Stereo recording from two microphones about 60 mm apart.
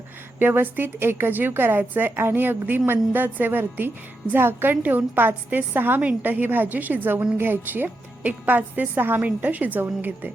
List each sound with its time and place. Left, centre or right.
0.3 s a woman's voice: right